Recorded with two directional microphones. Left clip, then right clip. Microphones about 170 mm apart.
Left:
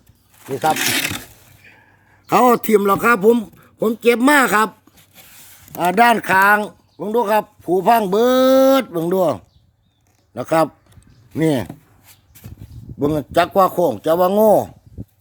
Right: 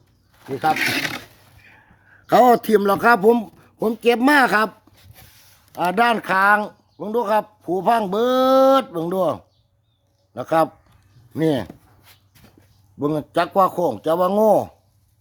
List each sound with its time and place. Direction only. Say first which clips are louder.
0.5 s speech: left 2 dB; 10° left (ahead or behind)
2.2 s a man's voice: even; 10° left (ahead or behind)
5.7 s speech: left 4 dB; 20° left (ahead or behind)
13.0 s speech: left 4 dB; 25° left (ahead or behind)